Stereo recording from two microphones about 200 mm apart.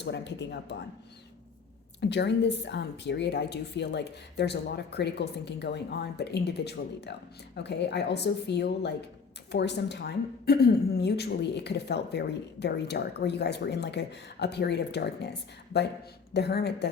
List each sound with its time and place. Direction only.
0.0 s a woman's voice: 60° left (ahead or behind)
2.0 s a woman's voice: 60° left (ahead or behind)